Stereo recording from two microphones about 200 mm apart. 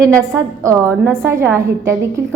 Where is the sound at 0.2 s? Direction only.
15° right (ahead or behind).